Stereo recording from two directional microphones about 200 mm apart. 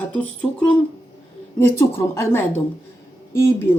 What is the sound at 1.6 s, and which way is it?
Speech, 10° left (ahead or behind).